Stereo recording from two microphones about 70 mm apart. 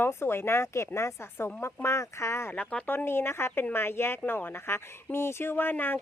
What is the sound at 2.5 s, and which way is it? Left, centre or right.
Speech, left.